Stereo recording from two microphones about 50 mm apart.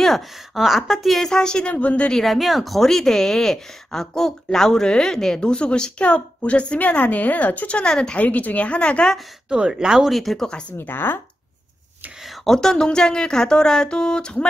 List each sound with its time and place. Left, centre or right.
0.6 s a woman's voice: centre; by 2.1 s left
2.1 s speech: centre
8.2 s speech: left
9.5 s speech: centre
10.1 s a woman's voice: centre
10.8 s speech: left
12.4 s speech: centre